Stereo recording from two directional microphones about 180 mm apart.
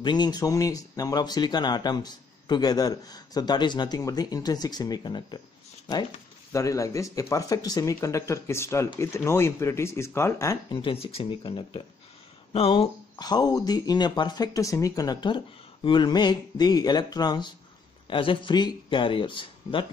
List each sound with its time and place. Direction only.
0.0 s speech: 25° left (ahead or behind)
6.5 s speech: 15° left (ahead or behind); by 12.9 s 35° left (ahead or behind)
13.1 s speech: 20° left (ahead or behind)